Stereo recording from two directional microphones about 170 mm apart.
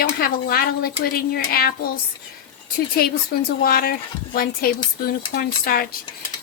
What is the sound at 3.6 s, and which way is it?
Speech, 60° left (ahead or behind).